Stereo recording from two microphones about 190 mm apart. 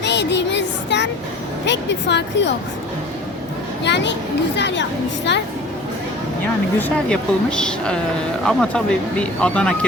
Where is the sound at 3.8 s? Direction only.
65° left (ahead or behind).